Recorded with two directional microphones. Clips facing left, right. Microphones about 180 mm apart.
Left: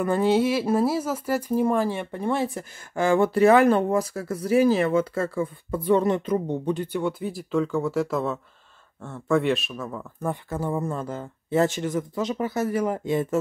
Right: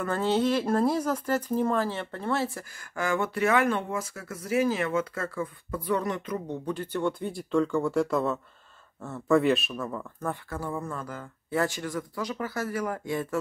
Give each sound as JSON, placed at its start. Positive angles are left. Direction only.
{"t": 0.0, "sound": "speech", "side_deg": 15}
{"t": 10.2, "sound": "speech", "side_deg": 20}